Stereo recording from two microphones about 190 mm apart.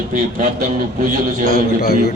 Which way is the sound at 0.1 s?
45° right (ahead or behind).